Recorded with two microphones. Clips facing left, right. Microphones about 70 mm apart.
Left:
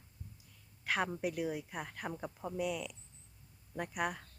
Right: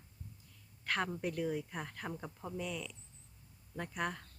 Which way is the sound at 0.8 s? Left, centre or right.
Centre.